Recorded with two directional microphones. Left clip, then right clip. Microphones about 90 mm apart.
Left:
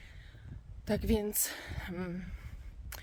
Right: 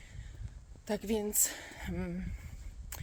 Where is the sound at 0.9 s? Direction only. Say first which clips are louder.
Left 2 dB; 40° left (ahead or behind).